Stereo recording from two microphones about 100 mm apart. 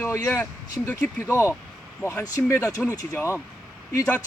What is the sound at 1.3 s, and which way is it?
Speech, 30° left (ahead or behind).